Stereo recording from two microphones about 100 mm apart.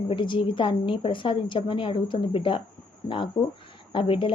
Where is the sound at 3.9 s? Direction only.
55° left (ahead or behind).